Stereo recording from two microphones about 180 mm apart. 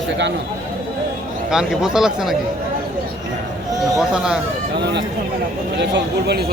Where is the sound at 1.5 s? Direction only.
5° right (ahead or behind).